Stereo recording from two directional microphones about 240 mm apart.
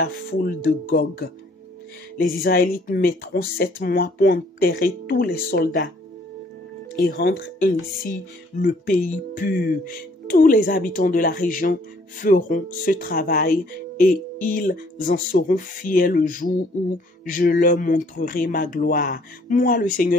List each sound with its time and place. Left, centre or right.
0.0 s speech: left
7.0 s speech: left